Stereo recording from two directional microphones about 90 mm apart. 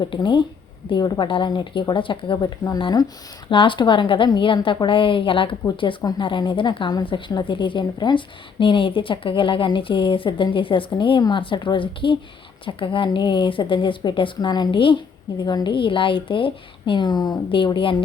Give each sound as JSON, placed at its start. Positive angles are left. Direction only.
{"t": 0.0, "sound": "a woman's voice", "side_deg": 60}
{"t": 1.3, "sound": "a woman's voice", "side_deg": 65}
{"t": 3.5, "sound": "a woman's voice", "side_deg": 70}
{"t": 15.4, "sound": "a woman's voice", "side_deg": 55}
{"t": 17.7, "sound": "a woman's voice", "side_deg": 70}